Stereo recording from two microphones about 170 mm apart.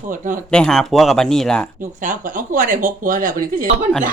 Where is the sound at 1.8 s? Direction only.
50° right (ahead or behind).